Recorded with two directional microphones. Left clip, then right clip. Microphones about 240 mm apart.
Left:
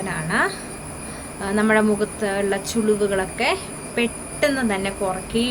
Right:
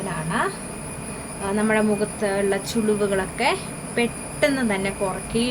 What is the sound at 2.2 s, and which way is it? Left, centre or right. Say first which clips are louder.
A woman's voice: right 2 dB; centre.